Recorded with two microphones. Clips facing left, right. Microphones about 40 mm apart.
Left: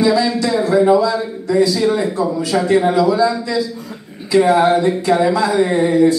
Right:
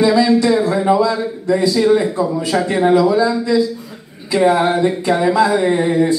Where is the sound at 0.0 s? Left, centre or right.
Centre.